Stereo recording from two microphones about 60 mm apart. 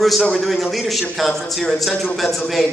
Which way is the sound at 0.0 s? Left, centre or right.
Centre.